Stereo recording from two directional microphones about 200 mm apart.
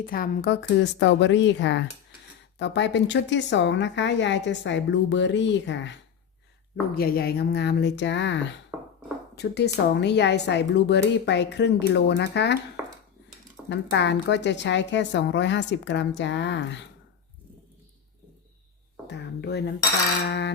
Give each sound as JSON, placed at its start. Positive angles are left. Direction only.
{"t": 0.0, "sound": "speech", "side_deg": 45}
{"t": 6.9, "sound": "speech", "side_deg": 50}
{"t": 12.8, "sound": "cutlery", "side_deg": -10}
{"t": 13.7, "sound": "speech", "side_deg": 60}
{"t": 19.1, "sound": "a sound", "side_deg": 60}
{"t": 20.2, "sound": "speech", "side_deg": 55}